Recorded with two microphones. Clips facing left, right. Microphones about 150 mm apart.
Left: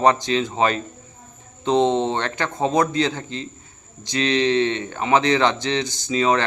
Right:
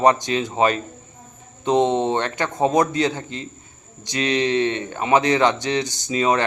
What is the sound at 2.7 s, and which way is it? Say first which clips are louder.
Speech: even; 40° right (ahead or behind).